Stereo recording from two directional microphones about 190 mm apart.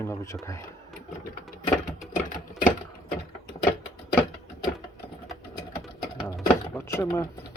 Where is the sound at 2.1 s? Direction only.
45° left (ahead or behind).